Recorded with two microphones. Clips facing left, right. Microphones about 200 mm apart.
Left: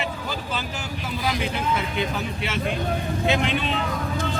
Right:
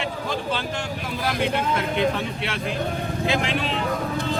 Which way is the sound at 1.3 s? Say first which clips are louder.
Right 2 dB; centre (ahead or behind).